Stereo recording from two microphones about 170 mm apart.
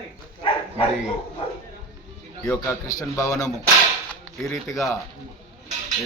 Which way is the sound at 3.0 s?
20° left (ahead or behind).